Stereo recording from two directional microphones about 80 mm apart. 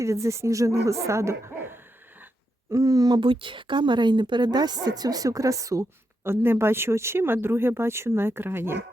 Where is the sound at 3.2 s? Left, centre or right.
Right.